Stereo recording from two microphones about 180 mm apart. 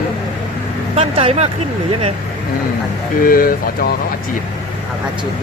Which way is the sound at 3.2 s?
55° left (ahead or behind).